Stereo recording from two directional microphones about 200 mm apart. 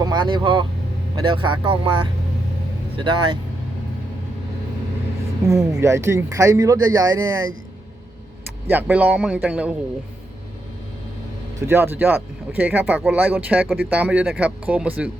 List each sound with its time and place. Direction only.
0.0 s speech: 20° right (ahead or behind)
5.5 s speech: 15° right (ahead or behind)
8.7 s speech: 5° right (ahead or behind)
11.6 s speech: 10° right (ahead or behind)